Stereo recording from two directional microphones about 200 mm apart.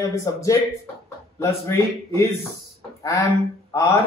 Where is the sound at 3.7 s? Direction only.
15° left (ahead or behind).